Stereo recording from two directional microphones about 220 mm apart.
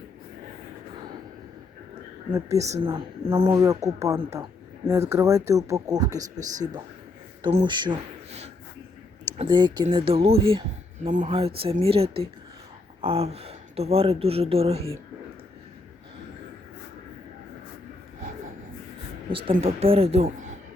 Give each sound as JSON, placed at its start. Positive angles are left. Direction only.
{"t": 2.6, "sound": "speech", "side_deg": -30}
{"t": 19.3, "sound": "speech", "side_deg": -25}